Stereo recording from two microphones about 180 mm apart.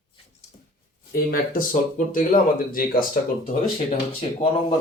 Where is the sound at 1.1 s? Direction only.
55° left (ahead or behind).